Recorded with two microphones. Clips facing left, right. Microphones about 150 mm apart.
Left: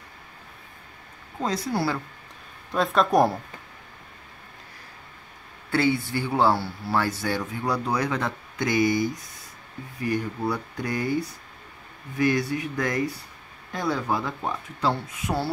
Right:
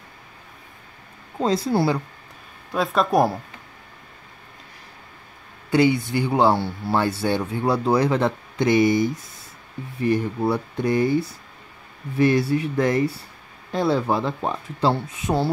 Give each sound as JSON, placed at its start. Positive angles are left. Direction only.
{"t": 1.4, "sound": "speech", "side_deg": -30}
{"t": 2.7, "sound": "speech", "side_deg": 0}
{"t": 5.7, "sound": "speech", "side_deg": -15}